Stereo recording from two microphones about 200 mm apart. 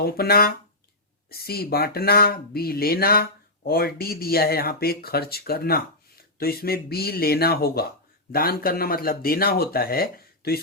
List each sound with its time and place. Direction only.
0.0 s speech: 50° left (ahead or behind)